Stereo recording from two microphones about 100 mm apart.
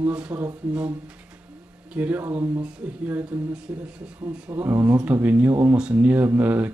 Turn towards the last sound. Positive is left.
turn(degrees=-20)  # may be behind; listen again after turning